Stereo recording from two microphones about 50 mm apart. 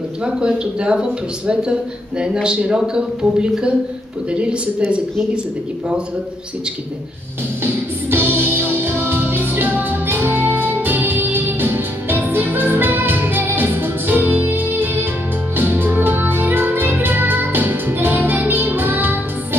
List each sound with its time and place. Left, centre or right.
0.2 s speech: centre
7.6 s music: right